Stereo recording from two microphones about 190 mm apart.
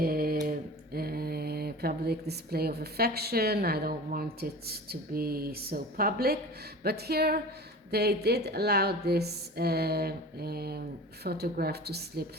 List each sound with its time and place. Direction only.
0.0 s mantra: 50° right (ahead or behind)
0.9 s speech: 55° right (ahead or behind)